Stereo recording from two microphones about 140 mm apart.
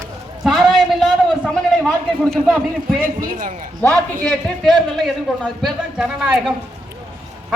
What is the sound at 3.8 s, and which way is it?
A man's voice, 10° left (ahead or behind).